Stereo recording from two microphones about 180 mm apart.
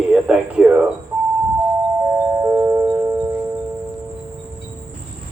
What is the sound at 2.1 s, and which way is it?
Music, 15° right (ahead or behind).